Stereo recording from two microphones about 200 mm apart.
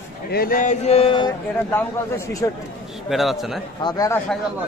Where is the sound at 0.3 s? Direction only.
45° left (ahead or behind); by 1.3 s 25° left (ahead or behind).